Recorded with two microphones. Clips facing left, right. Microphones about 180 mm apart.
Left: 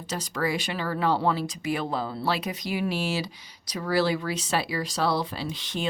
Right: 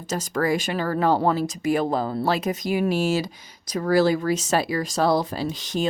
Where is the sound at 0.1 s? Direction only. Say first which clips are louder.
Right 5 dB; 45° right (ahead or behind).